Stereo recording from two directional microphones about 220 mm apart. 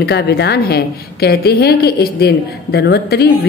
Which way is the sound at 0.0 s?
50° left (ahead or behind).